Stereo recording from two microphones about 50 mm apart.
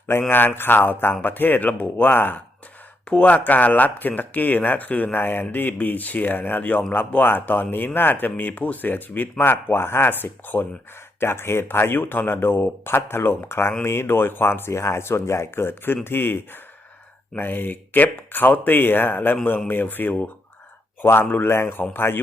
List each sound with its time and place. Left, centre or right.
0.1 s speech: left
3.1 s speech: left
11.2 s speech: left
14.7 s speech: left
21.5 s speech: left
21.9 s speech: left